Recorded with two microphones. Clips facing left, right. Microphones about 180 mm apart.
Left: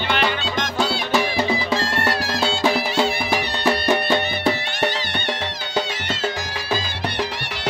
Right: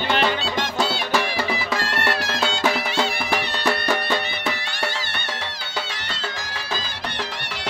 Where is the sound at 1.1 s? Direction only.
15° left (ahead or behind); by 2.5 s 30° left (ahead or behind).